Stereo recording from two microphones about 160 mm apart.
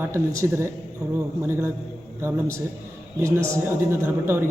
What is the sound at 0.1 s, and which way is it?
Speech, 15° right (ahead or behind).